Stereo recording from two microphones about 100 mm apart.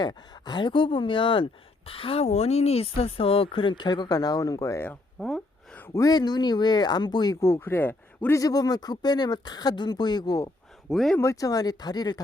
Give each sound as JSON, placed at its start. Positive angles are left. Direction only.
{"t": 0.0, "sound": "speech", "side_deg": 45}
{"t": 1.9, "sound": "speech", "side_deg": 70}
{"t": 5.2, "sound": "speech", "side_deg": 5}
{"t": 5.9, "sound": "speech", "side_deg": 35}
{"t": 7.4, "sound": "speech", "side_deg": 25}
{"t": 8.4, "sound": "speech", "side_deg": 40}
{"t": 10.8, "sound": "speech", "side_deg": 0}
{"t": 11.2, "sound": "speech", "side_deg": 35}